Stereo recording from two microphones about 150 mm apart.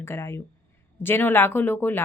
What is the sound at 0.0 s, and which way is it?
A woman's voice, 20° left (ahead or behind).